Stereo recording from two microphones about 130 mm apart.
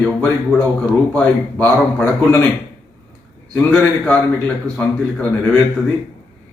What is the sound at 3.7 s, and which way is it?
A man's voice, 10° left (ahead or behind).